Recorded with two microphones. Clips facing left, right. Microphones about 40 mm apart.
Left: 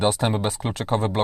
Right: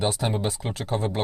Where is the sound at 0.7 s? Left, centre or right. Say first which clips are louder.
Left 6 dB; left.